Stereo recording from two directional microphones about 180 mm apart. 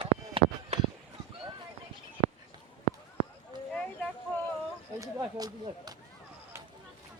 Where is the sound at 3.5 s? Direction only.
25° right (ahead or behind).